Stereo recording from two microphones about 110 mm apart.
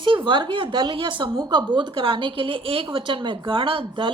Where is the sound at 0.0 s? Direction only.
50° right (ahead or behind).